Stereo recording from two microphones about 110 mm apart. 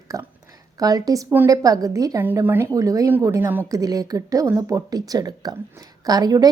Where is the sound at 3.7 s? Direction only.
35° right (ahead or behind).